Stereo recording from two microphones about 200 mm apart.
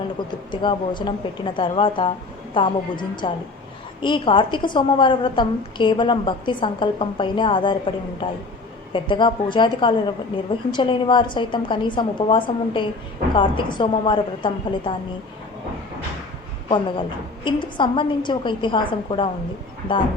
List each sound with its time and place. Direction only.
0.3 s a woman's voice: 25° left (ahead or behind)
16.6 s a woman's voice: 25° left (ahead or behind)